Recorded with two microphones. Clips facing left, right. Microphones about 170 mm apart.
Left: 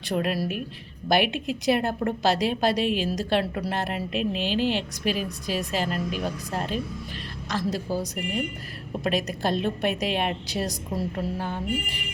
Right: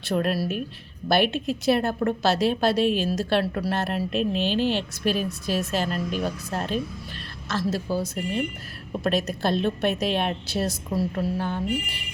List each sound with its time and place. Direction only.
0.1 s speech: 15° left (ahead or behind)